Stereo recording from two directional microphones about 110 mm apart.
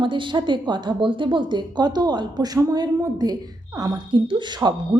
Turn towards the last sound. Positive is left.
turn(degrees=-45)  # may be behind; listen again after turning